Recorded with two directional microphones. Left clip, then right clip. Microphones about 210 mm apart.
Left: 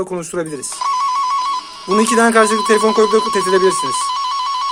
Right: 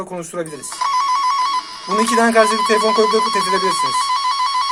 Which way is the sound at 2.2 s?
40° left (ahead or behind).